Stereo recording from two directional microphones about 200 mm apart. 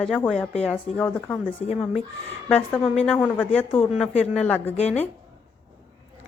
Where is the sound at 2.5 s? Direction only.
5° left (ahead or behind).